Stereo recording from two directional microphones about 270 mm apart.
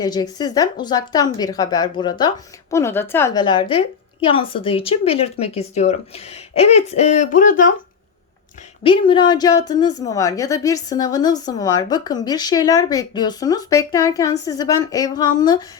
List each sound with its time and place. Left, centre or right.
0.0 s speech: centre
8.8 s speech: centre